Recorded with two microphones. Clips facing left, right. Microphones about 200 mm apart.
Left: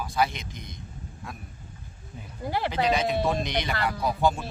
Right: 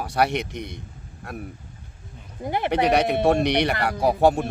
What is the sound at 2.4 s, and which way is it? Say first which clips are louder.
Speech: right 3 dB; 20° right (ahead or behind).